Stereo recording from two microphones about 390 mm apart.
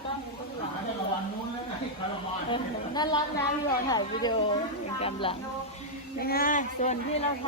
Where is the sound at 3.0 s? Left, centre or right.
Centre.